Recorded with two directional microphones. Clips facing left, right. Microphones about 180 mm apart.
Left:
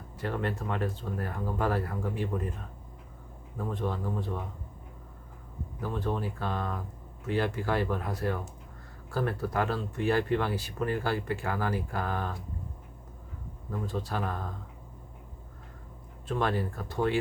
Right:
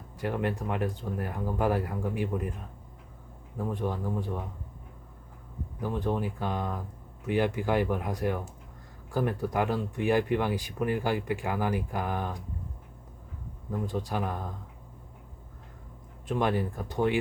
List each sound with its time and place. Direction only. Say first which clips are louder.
0.2 s speech: right 2 dB; 15° right (ahead or behind)
5.8 s speech: right 2 dB; 15° right (ahead or behind)
13.7 s speech: right 2 dB; 15° right (ahead or behind)
16.2 s speech: right 2 dB; 15° right (ahead or behind)